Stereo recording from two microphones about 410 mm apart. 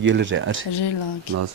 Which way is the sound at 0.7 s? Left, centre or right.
Left.